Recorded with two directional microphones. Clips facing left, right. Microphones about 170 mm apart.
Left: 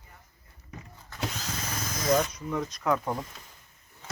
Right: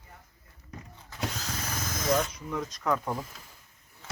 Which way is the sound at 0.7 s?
Centre (ahead or behind).